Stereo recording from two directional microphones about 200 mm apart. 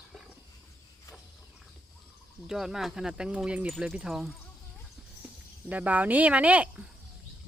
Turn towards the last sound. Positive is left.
turn(degrees=-5)  # may be behind; listen again after turning